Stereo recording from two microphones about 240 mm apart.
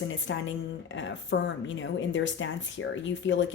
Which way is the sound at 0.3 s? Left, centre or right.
Left.